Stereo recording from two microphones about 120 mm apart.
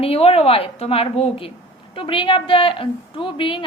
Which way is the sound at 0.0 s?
55° left (ahead or behind).